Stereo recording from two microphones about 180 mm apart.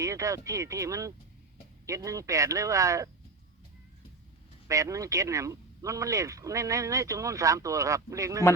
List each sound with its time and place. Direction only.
0.0 s speech: 15° right (ahead or behind)
4.7 s speech: 15° right (ahead or behind)